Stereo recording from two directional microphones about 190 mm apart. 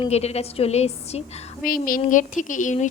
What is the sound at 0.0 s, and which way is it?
A woman's voice, 35° left (ahead or behind).